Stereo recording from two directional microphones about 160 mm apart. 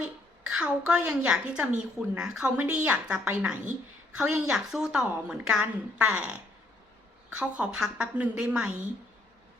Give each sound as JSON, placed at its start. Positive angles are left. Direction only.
{"t": 0.4, "sound": "a woman's voice", "side_deg": -5}